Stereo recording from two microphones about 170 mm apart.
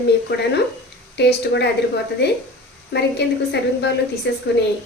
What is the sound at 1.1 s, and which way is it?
Speech, 80° left.